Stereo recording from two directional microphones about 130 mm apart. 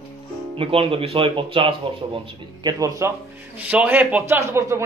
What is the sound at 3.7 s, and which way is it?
A man's voice, 10° right (ahead or behind).